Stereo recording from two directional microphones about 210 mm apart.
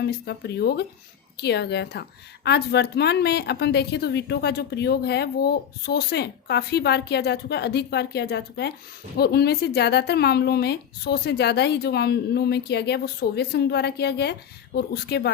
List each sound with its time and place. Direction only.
0.0 s a woman's voice: 50° left (ahead or behind)